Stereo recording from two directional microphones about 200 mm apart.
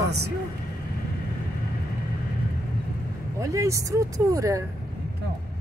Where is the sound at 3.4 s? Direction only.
15° right (ahead or behind).